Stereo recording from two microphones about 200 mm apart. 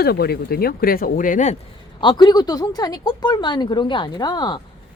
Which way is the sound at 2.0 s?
20° left (ahead or behind).